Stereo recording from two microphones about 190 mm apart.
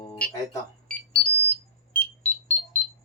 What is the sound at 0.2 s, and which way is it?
Smoke detector, 5° left (ahead or behind).